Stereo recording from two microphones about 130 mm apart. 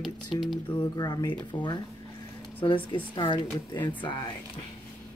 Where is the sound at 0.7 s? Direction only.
30° left (ahead or behind).